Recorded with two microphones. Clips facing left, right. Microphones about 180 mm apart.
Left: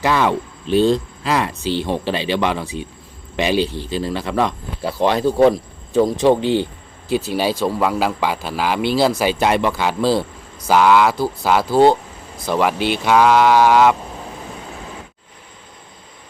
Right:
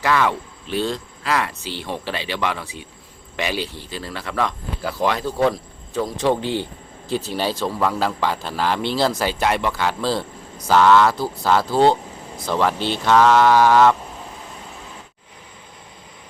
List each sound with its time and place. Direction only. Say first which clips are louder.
0.0 s speech: left 3 dB; 20° left (ahead or behind)